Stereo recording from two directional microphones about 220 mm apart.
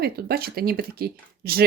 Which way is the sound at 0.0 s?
45° right (ahead or behind).